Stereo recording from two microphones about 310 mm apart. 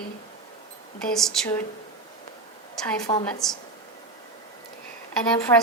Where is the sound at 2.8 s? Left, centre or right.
Centre.